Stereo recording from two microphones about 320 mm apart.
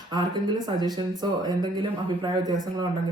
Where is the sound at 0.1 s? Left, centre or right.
Centre.